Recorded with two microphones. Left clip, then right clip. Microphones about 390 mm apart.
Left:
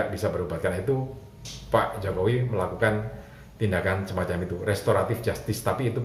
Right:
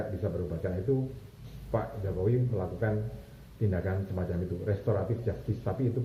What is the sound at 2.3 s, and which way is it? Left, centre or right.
Speech, centre.